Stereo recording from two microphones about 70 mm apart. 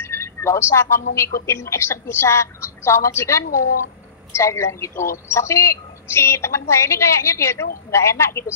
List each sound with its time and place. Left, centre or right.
0.0 s a woman's voice: left